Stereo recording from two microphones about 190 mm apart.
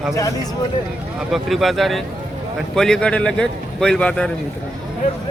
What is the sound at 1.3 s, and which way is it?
A man's voice, centre (ahead or behind).